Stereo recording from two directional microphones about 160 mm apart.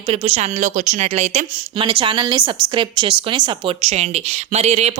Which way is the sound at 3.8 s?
45° right (ahead or behind).